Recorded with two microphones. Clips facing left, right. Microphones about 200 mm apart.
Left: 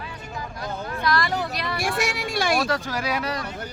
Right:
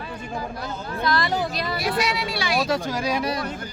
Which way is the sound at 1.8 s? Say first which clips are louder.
Right 1 dB; 50° left (ahead or behind).